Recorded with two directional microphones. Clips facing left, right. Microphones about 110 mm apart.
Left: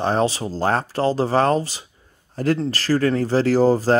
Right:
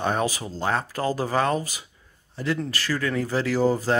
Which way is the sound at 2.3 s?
50° left (ahead or behind).